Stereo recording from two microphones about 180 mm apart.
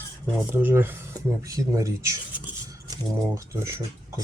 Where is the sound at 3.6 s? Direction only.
15° right (ahead or behind).